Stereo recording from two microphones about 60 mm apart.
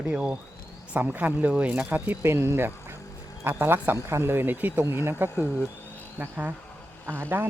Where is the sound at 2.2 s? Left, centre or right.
Right.